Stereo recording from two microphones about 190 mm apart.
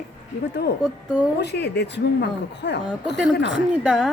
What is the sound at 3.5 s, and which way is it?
Speech, 5° right (ahead or behind).